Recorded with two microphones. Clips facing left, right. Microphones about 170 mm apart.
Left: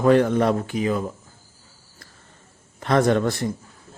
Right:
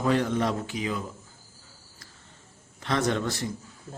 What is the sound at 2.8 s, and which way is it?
Speech, 55° left (ahead or behind).